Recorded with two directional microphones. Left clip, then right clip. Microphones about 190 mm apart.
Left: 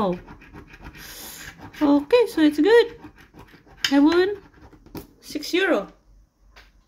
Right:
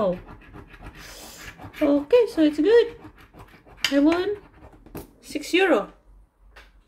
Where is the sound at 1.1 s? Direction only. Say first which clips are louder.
Left 3 dB; 30° left (ahead or behind).